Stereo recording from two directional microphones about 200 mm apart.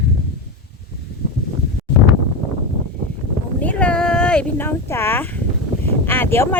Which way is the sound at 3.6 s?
5° left (ahead or behind).